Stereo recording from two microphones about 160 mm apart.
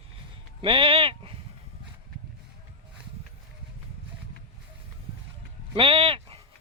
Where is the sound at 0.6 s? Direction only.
35° right (ahead or behind).